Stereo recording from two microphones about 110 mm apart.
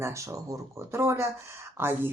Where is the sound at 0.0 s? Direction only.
25° right (ahead or behind).